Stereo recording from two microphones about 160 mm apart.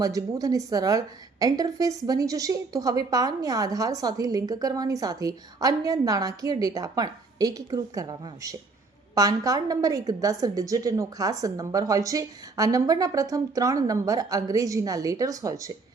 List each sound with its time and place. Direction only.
0.0 s a woman's voice: 20° right (ahead or behind)